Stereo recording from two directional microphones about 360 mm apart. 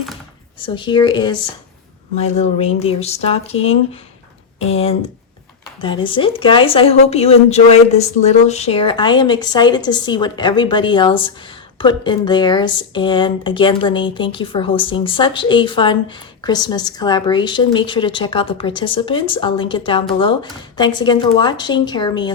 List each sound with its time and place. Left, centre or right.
0.6 s speech: centre
4.7 s speech: centre